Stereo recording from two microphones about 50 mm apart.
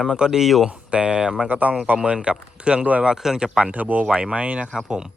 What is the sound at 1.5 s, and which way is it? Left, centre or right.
Speech, right.